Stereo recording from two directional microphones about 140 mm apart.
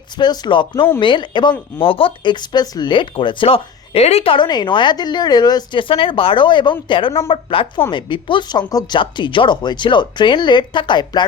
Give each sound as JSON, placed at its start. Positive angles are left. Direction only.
{"t": 0.2, "sound": "speech", "side_deg": 30}